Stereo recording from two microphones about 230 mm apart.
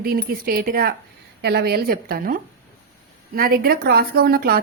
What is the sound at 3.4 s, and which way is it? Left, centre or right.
A woman's voice, right.